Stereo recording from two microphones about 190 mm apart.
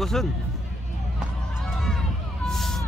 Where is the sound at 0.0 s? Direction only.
Centre (ahead or behind).